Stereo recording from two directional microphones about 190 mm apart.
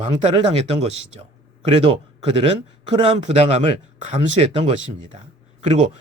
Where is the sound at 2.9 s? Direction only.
30° right (ahead or behind).